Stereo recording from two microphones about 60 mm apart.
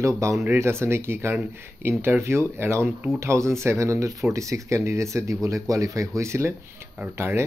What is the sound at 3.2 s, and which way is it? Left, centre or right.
Speech, right.